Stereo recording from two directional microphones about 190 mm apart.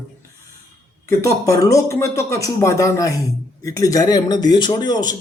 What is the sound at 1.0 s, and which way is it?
A man's voice, 15° left (ahead or behind).